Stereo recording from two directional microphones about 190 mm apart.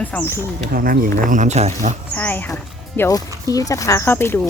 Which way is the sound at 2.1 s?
10° left (ahead or behind).